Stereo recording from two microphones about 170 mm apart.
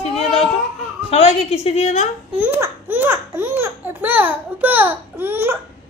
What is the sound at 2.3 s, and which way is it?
Speech, 10° right (ahead or behind).